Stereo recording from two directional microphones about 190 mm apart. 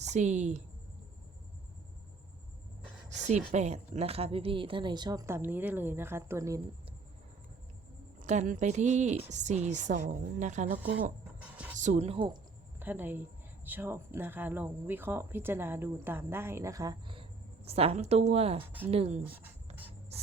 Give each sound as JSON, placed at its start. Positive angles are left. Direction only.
{"t": 0.1, "sound": "a woman's voice", "side_deg": -40}
{"t": 3.5, "sound": "a woman's voice", "side_deg": -35}
{"t": 8.2, "sound": "a woman's voice", "side_deg": -40}
{"t": 11.3, "sound": "a sound", "side_deg": -5}
{"t": 11.8, "sound": "a woman's voice", "side_deg": -35}
{"t": 12.8, "sound": "a woman's voice", "side_deg": -10}